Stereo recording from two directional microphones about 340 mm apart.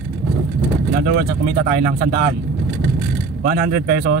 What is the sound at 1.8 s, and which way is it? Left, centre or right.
Speech, right.